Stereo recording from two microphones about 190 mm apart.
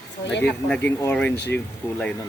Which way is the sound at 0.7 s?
10° left (ahead or behind).